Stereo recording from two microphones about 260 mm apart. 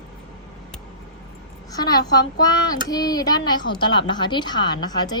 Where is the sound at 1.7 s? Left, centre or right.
Centre.